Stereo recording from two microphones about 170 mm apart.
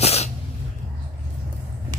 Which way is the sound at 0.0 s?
40° left (ahead or behind).